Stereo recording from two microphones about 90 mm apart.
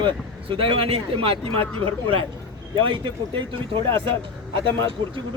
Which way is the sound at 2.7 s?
65° right (ahead or behind).